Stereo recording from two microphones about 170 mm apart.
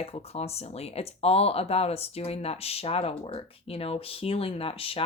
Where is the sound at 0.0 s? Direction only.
35° left (ahead or behind).